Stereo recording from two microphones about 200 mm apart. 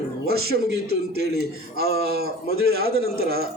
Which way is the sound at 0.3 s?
50° right (ahead or behind).